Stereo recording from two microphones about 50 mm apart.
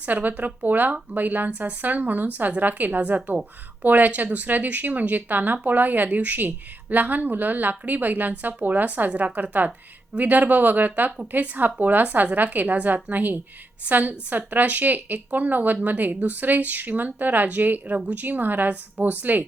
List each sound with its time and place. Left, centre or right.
0.0 s speech: right